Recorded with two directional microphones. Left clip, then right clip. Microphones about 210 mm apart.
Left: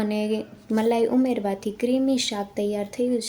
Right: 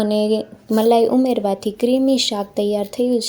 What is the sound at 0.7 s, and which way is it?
Speech, 20° right (ahead or behind).